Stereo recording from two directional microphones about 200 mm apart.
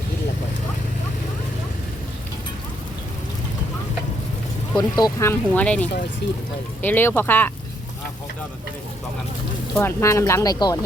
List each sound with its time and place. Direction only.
4.7 s speech: 20° left (ahead or behind)
6.2 s speech: 60° left (ahead or behind)
6.8 s speech: 10° left (ahead or behind)
9.7 s speech: 15° left (ahead or behind)